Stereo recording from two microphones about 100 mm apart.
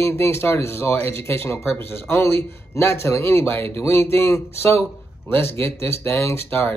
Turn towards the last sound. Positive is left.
turn(degrees=25)  # may be behind; listen again after turning